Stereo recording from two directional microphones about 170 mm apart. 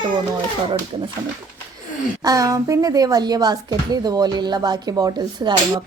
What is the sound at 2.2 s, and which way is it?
Speech, 20° right (ahead or behind).